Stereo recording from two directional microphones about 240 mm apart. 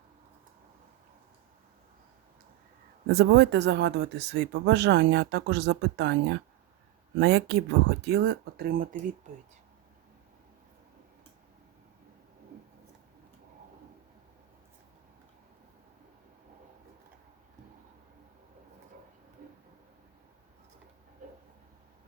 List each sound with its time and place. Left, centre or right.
3.1 s speech: right